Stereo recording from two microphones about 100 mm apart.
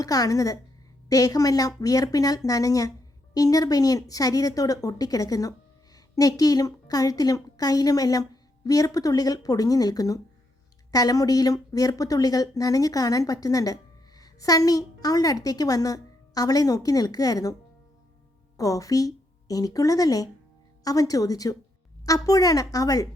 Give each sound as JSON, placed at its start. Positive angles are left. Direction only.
{"t": 0.0, "sound": "a woman's voice", "side_deg": 35}